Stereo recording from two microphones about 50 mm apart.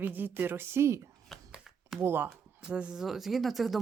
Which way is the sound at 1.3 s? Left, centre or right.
Centre.